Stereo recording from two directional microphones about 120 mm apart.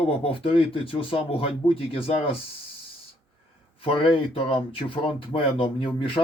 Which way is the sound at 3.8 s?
50° left (ahead or behind).